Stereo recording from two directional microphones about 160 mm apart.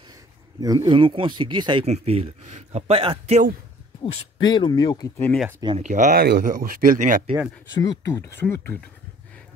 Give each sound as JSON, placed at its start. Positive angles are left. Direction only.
{"t": 0.6, "sound": "speech", "side_deg": -25}
{"t": 1.9, "sound": "speech", "side_deg": -40}
{"t": 4.0, "sound": "speech", "side_deg": 30}
{"t": 5.8, "sound": "speech", "side_deg": -50}
{"t": 6.1, "sound": "speech", "side_deg": -80}
{"t": 7.7, "sound": "speech", "side_deg": 25}
{"t": 8.1, "sound": "speech", "side_deg": 15}